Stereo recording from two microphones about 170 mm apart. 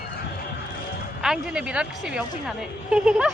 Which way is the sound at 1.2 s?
5° right (ahead or behind).